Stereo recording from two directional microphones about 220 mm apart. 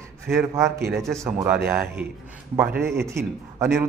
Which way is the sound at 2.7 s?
50° right (ahead or behind).